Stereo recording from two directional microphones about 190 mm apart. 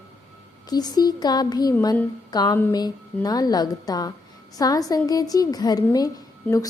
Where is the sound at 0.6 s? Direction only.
20° left (ahead or behind).